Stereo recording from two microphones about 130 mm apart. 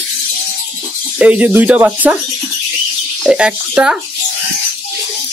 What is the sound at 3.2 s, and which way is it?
Speech, 5° right (ahead or behind).